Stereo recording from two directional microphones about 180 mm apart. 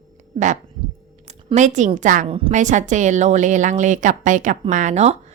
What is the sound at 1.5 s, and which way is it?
A woman's voice, 40° right (ahead or behind).